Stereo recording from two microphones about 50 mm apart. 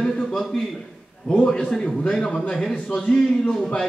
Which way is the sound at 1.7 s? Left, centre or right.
Centre.